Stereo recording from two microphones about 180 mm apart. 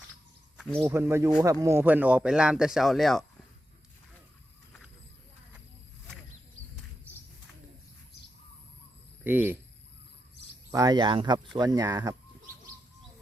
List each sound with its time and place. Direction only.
0.5 s a sound: centre (ahead or behind)
0.8 s speech: 15° right (ahead or behind); by 3.2 s centre (ahead or behind)
9.2 s speech: 10° right (ahead or behind)
10.7 s speech: 20° right (ahead or behind)